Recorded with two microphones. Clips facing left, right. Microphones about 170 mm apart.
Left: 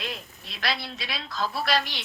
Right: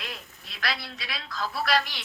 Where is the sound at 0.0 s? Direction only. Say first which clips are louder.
Left 4 dB; 25° left (ahead or behind).